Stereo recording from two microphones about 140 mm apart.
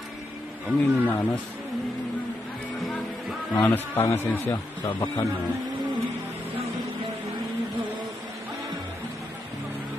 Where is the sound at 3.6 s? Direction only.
15° left (ahead or behind).